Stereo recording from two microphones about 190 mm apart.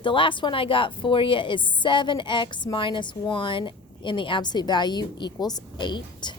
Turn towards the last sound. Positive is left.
turn(degrees=25)  # may be behind; listen again after turning